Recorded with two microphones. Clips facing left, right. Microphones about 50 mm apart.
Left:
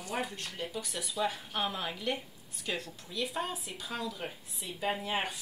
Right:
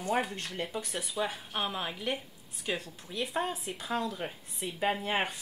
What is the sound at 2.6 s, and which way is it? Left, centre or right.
Speech, centre.